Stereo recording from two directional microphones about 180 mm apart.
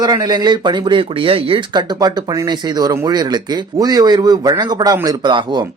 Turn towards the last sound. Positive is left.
turn(degrees=-25)  # may be behind; listen again after turning